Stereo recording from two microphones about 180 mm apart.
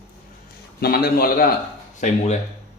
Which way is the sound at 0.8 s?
60° left (ahead or behind).